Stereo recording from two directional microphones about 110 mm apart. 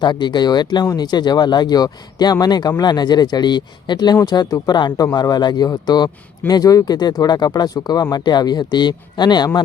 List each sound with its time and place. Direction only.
0.0 s speech: 45° left (ahead or behind)